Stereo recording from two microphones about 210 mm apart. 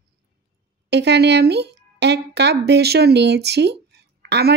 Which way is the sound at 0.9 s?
55° right (ahead or behind).